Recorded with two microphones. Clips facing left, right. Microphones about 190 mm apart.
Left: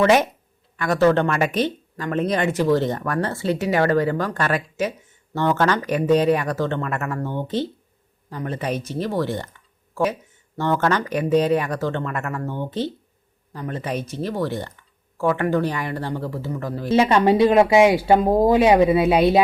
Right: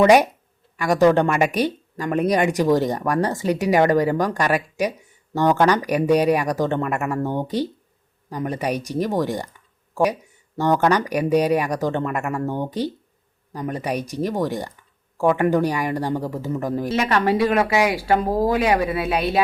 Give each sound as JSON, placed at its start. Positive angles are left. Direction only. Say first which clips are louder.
{"t": 0.0, "sound": "speech", "louder": "right 3 dB", "side_deg": -15}
{"t": 7.2, "sound": "speech", "louder": "right 3 dB", "side_deg": -45}
{"t": 7.4, "sound": "speech", "louder": "right 1 dB", "side_deg": -15}
{"t": 16.9, "sound": "speech", "louder": "left 5 dB", "side_deg": 25}